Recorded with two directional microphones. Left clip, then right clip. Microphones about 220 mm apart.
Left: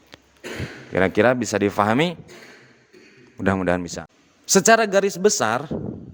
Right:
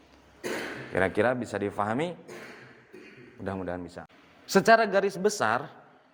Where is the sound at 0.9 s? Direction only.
45° left (ahead or behind).